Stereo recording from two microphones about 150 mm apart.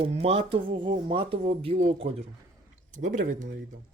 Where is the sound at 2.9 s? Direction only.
60° right (ahead or behind).